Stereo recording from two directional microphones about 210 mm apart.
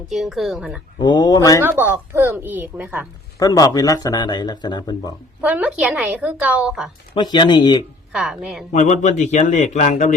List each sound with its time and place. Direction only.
0.1 s a woman's voice: centre (ahead or behind)
0.9 s speech: 20° left (ahead or behind)
1.6 s a woman's voice: 10° right (ahead or behind)
3.3 s speech: 15° left (ahead or behind)
5.4 s a woman's voice: 5° right (ahead or behind)
7.1 s speech: 20° left (ahead or behind)
8.1 s a woman's voice: centre (ahead or behind)
8.7 s a man's voice: 35° left (ahead or behind)